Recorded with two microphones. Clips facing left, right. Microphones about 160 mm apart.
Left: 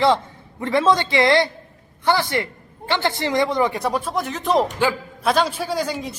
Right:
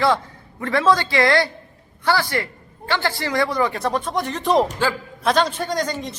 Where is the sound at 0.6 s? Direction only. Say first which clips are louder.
Even; 20° left (ahead or behind).